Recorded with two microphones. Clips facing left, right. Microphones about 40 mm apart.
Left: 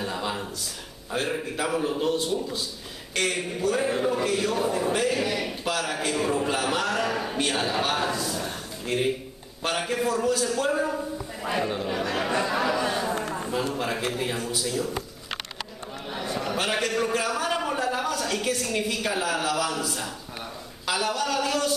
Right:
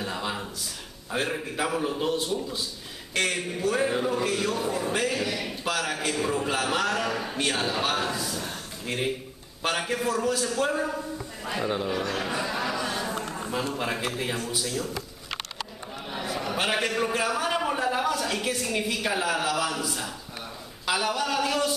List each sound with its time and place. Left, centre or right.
0.0 s a sound: centre
1.1 s a man's voice: centre
11.9 s chatter: centre
13.7 s a man's voice: centre
13.9 s a man's voice: centre
16.1 s a sound: centre
20.8 s speech: centre